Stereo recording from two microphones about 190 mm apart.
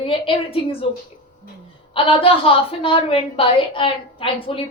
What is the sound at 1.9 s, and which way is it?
A woman's voice, 25° left (ahead or behind).